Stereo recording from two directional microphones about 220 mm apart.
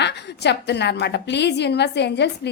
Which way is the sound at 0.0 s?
50° left (ahead or behind).